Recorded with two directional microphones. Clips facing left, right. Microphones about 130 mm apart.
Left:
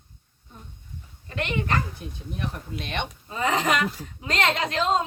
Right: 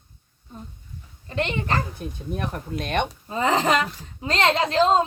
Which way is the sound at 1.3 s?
30° right (ahead or behind).